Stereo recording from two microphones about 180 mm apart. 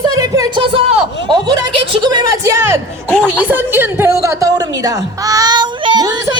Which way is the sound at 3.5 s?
10° right (ahead or behind).